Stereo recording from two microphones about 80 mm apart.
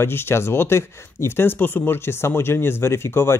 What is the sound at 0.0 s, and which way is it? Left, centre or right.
Speech, left.